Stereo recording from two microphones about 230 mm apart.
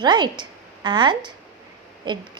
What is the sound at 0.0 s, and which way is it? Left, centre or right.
A woman's voice, centre.